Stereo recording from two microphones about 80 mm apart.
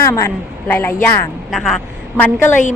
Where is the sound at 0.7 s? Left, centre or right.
Left.